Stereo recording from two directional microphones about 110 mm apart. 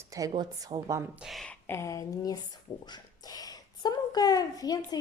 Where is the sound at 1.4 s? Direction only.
20° left (ahead or behind).